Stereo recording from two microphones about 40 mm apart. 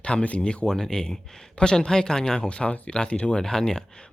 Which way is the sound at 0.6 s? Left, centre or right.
Centre.